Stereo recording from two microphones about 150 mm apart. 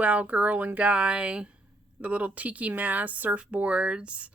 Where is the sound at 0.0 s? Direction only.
10° right (ahead or behind).